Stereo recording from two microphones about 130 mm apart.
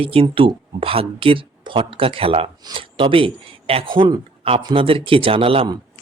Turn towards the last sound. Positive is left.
turn(degrees=-45)  # may be behind; listen again after turning